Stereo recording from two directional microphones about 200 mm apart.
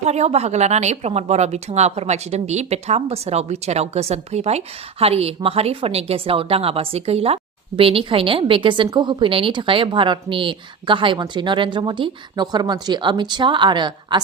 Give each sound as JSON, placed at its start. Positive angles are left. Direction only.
{"t": 0.0, "sound": "a woman's voice", "side_deg": -35}